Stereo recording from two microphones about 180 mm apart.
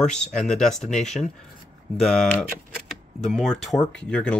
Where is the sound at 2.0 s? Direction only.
Centre (ahead or behind).